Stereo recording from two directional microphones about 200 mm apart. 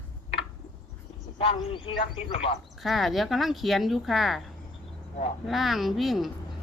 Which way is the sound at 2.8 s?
Centre (ahead or behind).